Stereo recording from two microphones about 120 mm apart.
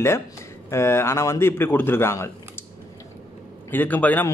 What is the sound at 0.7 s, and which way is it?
A man's voice, 20° left (ahead or behind).